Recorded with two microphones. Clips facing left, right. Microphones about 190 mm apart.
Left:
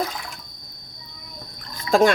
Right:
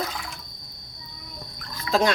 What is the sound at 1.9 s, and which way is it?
Speech, 50° left (ahead or behind).